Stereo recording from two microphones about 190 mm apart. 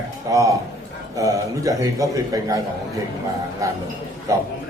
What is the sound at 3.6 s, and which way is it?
Speech, 15° right (ahead or behind).